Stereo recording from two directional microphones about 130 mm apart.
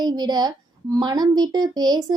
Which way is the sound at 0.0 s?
35° right (ahead or behind).